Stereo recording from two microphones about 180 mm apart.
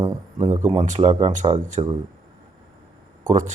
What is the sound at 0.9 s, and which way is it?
Speech, 35° right (ahead or behind).